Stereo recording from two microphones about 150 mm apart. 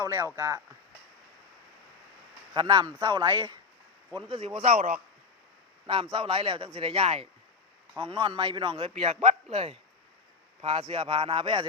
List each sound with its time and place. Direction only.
0.0 s speech: 25° right (ahead or behind)
2.6 s speech: 30° right (ahead or behind)
4.6 s speech: 55° right (ahead or behind)
5.8 s a man's voice: 35° right (ahead or behind)